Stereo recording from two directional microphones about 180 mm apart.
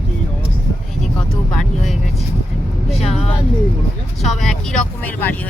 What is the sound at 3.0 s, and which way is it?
Speech, 35° left (ahead or behind).